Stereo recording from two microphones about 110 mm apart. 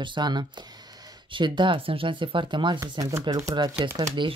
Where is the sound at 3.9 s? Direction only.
45° right (ahead or behind).